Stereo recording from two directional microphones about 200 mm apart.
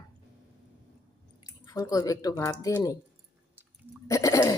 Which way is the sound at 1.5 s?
15° left (ahead or behind).